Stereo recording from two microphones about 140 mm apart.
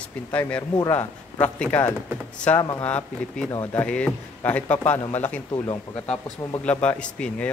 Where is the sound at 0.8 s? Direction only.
25° left (ahead or behind).